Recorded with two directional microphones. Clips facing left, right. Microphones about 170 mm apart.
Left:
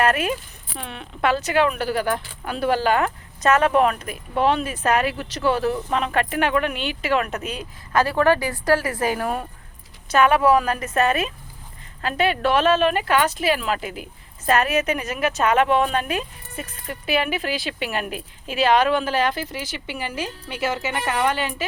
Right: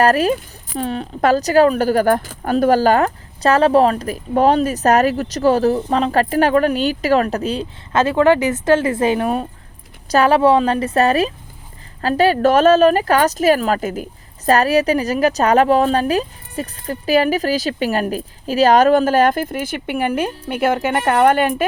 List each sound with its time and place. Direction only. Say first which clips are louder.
0.0 s speech: right 6 dB; 35° right (ahead or behind)
10.1 s speech: right 4 dB; 35° right (ahead or behind); by 21.5 s 55° right (ahead or behind)